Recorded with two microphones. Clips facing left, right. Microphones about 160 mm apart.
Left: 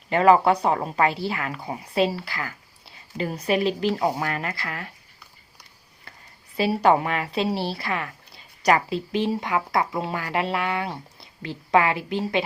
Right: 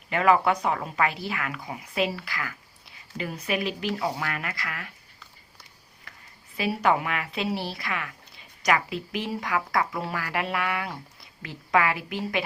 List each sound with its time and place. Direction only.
0.1 s speech: 35° left (ahead or behind)
6.6 s speech: 30° left (ahead or behind)